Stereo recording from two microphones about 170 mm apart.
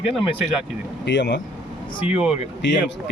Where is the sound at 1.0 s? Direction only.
90° left.